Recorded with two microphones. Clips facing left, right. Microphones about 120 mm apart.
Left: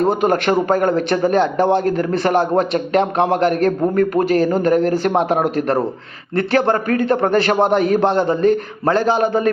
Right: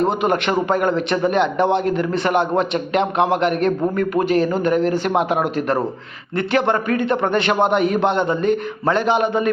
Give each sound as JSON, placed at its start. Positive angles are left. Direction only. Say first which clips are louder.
{"t": 0.2, "sound": "a man's voice", "louder": "left 3 dB", "side_deg": 40}